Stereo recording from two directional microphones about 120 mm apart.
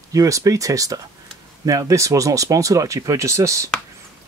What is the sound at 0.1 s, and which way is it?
Speech, 25° right (ahead or behind).